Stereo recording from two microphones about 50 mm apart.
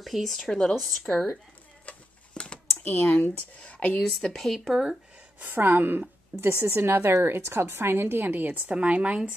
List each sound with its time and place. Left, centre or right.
0.0 s speech: centre
1.9 s a sound: left
2.8 s speech: left
4.2 s speech: centre
5.4 s a woman's voice: right
6.3 s a woman's voice: right
8.3 s a woman's voice: right